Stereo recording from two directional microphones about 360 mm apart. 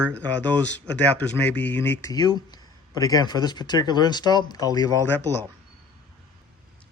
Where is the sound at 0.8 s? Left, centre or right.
Centre.